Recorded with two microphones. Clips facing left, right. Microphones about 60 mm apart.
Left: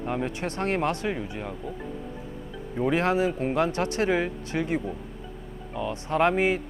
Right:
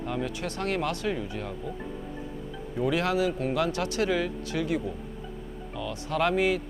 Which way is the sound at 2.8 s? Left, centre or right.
Left.